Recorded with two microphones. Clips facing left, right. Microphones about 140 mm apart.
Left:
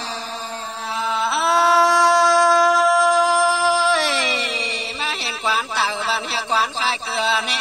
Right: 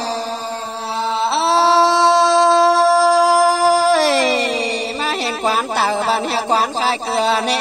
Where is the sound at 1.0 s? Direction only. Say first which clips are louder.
Right 3 dB; 30° right (ahead or behind).